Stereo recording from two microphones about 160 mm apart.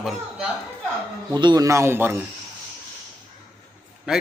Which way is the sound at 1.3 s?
25° right (ahead or behind).